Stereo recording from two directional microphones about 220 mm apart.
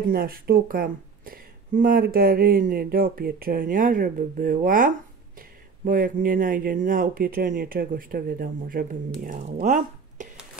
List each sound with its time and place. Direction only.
0.1 s speech: 45° right (ahead or behind)